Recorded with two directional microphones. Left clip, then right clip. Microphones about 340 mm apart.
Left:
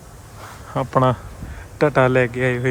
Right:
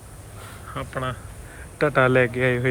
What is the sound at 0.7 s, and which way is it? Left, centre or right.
Speech, centre.